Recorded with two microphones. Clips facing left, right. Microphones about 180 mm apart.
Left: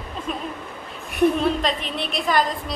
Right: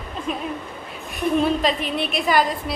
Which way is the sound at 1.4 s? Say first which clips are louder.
Right 2 dB; 5° right (ahead or behind).